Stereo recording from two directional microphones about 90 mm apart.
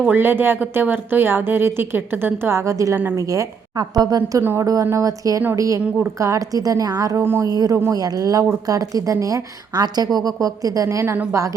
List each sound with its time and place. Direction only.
0.0 s a woman's voice: 20° right (ahead or behind); by 7.2 s 40° right (ahead or behind)
7.2 s speech: 25° right (ahead or behind)
7.4 s a woman's voice: 40° right (ahead or behind)